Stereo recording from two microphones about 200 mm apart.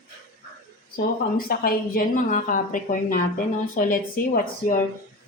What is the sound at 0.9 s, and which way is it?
A woman's voice, 45° left (ahead or behind).